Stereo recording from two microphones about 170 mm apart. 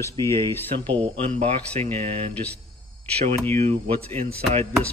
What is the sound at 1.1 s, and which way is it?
Speech, 40° right (ahead or behind).